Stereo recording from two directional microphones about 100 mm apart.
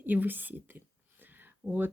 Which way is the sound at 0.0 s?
15° right (ahead or behind).